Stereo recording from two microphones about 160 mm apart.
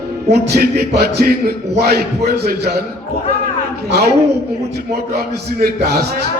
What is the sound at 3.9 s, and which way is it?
A woman's voice, 90° right.